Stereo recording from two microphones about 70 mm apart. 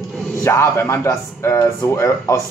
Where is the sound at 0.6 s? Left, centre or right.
Left.